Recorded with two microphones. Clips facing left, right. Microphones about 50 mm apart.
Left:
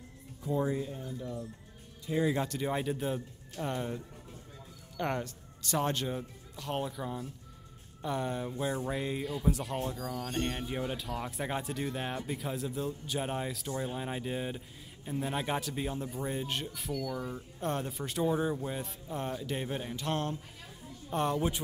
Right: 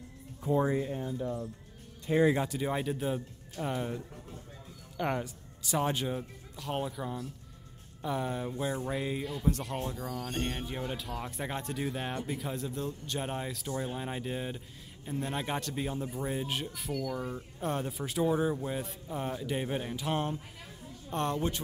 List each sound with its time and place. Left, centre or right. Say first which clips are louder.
0.4 s speech: right 3 dB; right
2.3 s a man's voice: right 1 dB; centre
21.1 s speech: left 1 dB; centre